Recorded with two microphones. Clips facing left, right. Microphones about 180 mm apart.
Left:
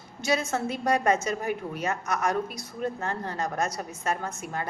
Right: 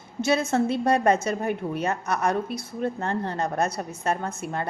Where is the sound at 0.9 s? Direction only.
30° right (ahead or behind).